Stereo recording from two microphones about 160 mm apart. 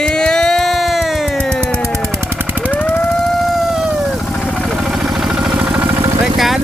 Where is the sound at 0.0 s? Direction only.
5° left (ahead or behind).